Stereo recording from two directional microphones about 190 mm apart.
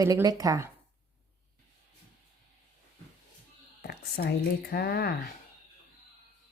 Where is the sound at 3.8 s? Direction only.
55° left (ahead or behind).